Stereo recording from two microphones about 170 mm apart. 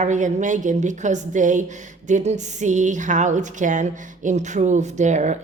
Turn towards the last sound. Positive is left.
turn(degrees=-45)  # may be behind; listen again after turning